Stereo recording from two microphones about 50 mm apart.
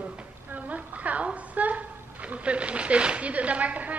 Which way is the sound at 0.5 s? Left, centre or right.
Right.